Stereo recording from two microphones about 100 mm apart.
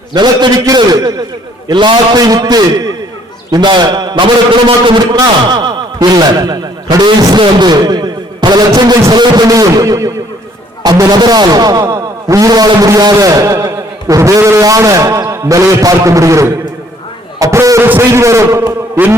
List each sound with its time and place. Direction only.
0.1 s a man's voice: 50° right (ahead or behind)
0.6 s music: 40° right (ahead or behind)
3.5 s a man's voice: 50° right (ahead or behind); by 10.1 s 35° right (ahead or behind)
10.8 s music: 40° right (ahead or behind)
17.4 s a man's voice: 30° right (ahead or behind)